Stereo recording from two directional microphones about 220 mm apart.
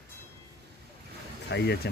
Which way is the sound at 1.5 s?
50° left (ahead or behind).